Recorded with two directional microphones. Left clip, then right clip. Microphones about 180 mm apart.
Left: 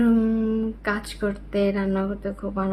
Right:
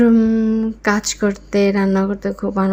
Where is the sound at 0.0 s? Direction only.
30° right (ahead or behind).